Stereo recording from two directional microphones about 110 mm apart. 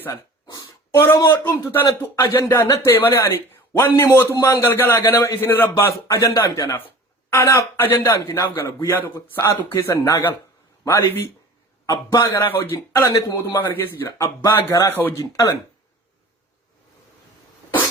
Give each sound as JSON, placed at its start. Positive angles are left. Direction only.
{"t": 0.1, "sound": "a sound", "side_deg": 30}
{"t": 1.5, "sound": "speech", "side_deg": 20}
{"t": 6.1, "sound": "speech", "side_deg": 30}
{"t": 11.9, "sound": "speech", "side_deg": 35}
{"t": 12.4, "sound": "speech", "side_deg": 20}